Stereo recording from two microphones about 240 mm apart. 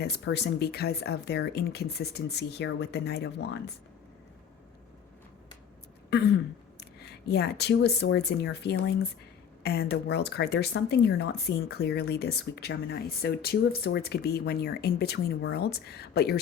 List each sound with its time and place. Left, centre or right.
0.0 s speech: left
6.7 s speech: left